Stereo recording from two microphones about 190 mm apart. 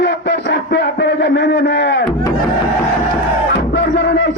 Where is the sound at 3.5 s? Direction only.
65° left (ahead or behind).